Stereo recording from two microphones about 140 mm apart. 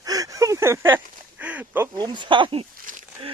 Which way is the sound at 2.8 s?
70° right (ahead or behind).